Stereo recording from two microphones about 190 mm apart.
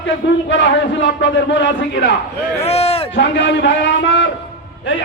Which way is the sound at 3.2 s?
65° left (ahead or behind).